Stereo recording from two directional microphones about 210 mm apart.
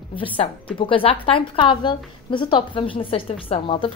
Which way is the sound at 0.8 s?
25° left (ahead or behind).